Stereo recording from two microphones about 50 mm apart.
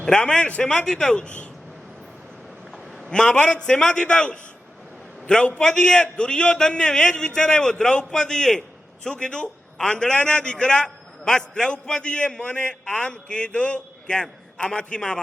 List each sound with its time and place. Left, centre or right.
0.0 s a man's voice: centre
3.1 s a man's voice: centre
3.9 s a man's voice: left